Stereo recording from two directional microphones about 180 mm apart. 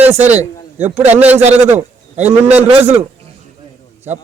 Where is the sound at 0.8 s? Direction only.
40° right (ahead or behind).